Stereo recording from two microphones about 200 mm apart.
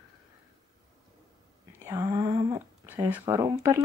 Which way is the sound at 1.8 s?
15° right (ahead or behind).